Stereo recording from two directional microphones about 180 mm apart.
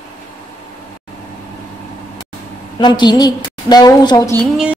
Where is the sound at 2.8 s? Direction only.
25° left (ahead or behind).